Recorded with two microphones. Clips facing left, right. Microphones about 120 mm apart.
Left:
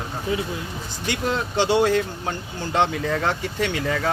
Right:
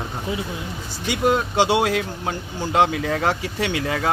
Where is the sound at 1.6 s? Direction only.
15° right (ahead or behind).